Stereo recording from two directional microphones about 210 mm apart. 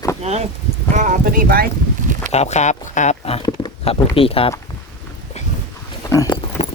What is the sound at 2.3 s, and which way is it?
Speech, 30° left (ahead or behind).